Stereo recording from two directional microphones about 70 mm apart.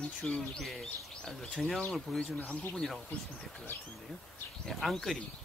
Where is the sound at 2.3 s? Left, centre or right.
Left.